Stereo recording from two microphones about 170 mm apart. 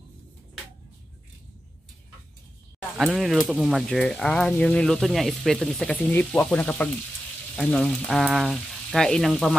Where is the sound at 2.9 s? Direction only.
Centre (ahead or behind).